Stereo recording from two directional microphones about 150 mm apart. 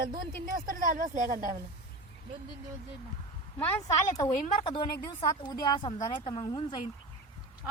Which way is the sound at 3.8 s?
25° left (ahead or behind).